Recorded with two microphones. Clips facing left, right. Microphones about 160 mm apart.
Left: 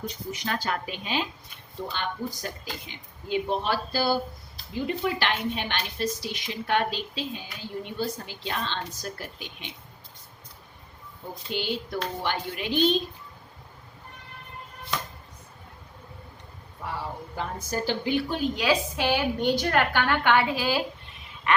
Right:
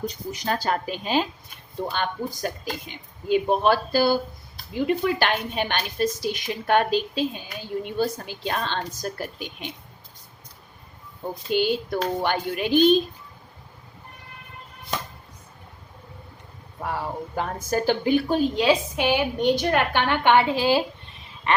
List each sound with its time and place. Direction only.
0.3 s a woman's voice: 40° right (ahead or behind)
11.5 s a woman's voice: 50° right (ahead or behind)
16.8 s a woman's voice: 55° right (ahead or behind)
18.5 s a woman's voice: 25° right (ahead or behind)
21.5 s quack: 30° right (ahead or behind)